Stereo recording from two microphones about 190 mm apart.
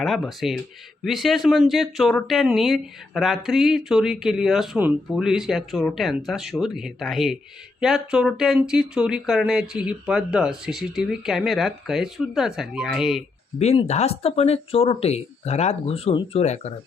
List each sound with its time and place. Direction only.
0.0 s speech: centre (ahead or behind)
13.6 s speech: 35° left (ahead or behind)